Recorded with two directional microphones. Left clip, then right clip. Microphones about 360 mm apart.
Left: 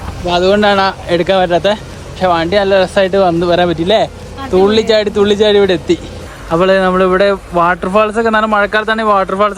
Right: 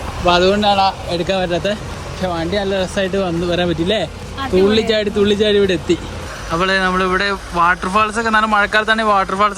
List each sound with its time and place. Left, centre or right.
0.3 s speech: centre
0.6 s a man's voice: left
1.2 s speech: centre
2.2 s speech: left
2.9 s speech: centre